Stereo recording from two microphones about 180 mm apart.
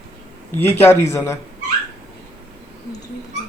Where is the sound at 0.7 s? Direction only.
15° left (ahead or behind).